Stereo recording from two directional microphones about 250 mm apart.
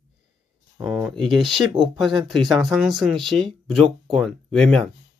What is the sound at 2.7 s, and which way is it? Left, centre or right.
Speech, centre.